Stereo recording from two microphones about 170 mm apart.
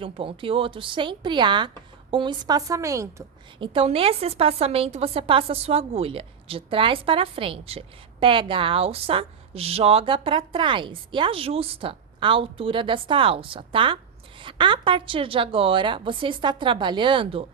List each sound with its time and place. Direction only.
0.0 s speech: 30° right (ahead or behind)
3.6 s a woman's voice: 30° right (ahead or behind)